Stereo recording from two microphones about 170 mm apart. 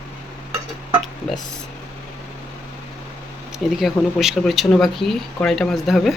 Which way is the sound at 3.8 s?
Centre (ahead or behind).